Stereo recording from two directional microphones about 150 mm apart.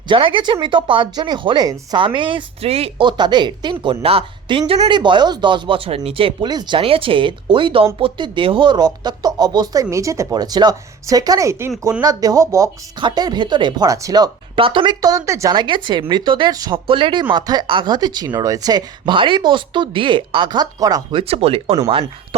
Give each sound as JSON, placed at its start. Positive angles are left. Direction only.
{"t": 0.1, "sound": "speech", "side_deg": -30}